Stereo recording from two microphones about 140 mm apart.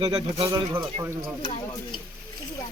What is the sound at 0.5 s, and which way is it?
Speech, 25° right (ahead or behind).